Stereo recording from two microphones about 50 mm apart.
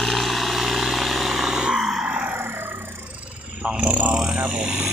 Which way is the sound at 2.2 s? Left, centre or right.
Right.